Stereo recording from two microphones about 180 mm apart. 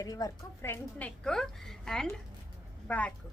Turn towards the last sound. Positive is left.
turn(degrees=10)  # may be behind; listen again after turning